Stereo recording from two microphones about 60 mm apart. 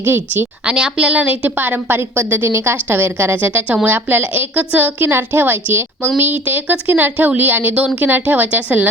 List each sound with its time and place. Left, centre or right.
0.0 s a woman's voice: right
0.6 s a woman's voice: centre